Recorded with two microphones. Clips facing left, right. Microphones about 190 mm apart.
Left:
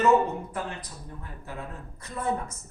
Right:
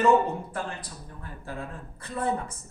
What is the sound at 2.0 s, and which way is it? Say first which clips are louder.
Speech: right 1 dB; 30° right (ahead or behind).